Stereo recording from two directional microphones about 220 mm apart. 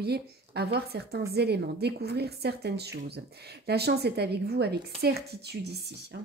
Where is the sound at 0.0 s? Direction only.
45° right (ahead or behind).